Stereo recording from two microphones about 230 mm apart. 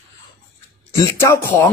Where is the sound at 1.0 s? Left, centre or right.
Centre.